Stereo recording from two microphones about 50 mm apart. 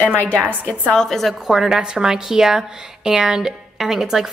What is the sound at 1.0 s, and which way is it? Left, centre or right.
Speech, centre.